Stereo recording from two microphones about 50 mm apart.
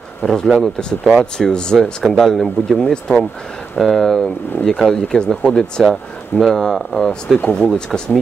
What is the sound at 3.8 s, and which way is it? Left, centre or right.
Speech, centre.